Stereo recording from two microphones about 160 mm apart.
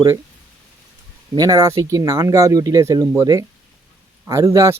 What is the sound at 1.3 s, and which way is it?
Speech, 20° right (ahead or behind).